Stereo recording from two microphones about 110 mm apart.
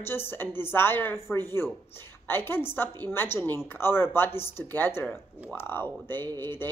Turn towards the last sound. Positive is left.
turn(degrees=20)  # may be behind; listen again after turning